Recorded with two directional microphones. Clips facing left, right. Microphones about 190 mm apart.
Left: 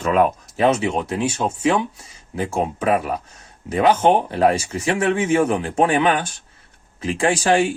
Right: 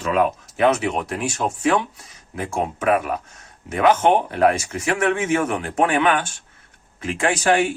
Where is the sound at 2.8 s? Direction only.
30° left (ahead or behind).